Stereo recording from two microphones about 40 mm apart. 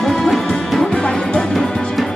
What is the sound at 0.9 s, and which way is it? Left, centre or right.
Music, left.